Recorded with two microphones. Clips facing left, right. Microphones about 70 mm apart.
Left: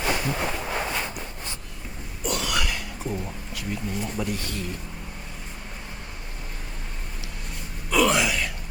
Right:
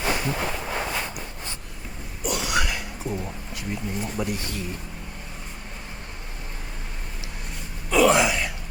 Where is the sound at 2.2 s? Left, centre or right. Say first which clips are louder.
Right 2 dB; centre.